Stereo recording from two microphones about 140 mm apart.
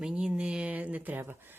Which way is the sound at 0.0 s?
5° right (ahead or behind).